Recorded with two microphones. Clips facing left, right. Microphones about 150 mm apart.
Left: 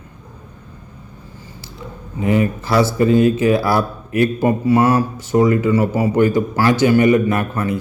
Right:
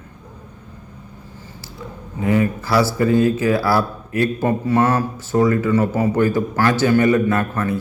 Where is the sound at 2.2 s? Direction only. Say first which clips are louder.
Left 1 dB; 20° left (ahead or behind).